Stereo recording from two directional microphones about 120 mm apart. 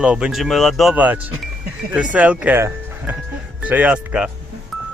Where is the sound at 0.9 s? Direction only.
15° right (ahead or behind).